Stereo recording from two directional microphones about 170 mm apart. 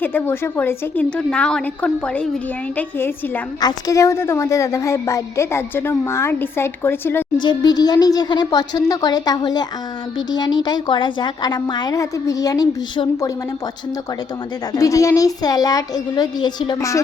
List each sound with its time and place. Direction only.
0.0 s a woman's voice: 10° left (ahead or behind)
3.6 s a woman's voice: 20° left (ahead or behind)
7.4 s a woman's voice: 25° left (ahead or behind)
14.7 s a woman's voice: 20° left (ahead or behind)